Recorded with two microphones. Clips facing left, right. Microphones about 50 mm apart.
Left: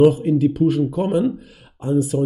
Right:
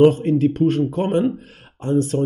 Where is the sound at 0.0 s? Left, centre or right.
Right.